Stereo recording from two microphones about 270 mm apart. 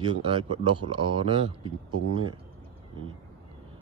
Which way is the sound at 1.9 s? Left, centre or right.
Right.